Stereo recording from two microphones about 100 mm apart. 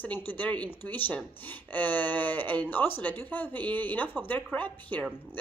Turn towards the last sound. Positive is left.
turn(degrees=15)  # may be behind; listen again after turning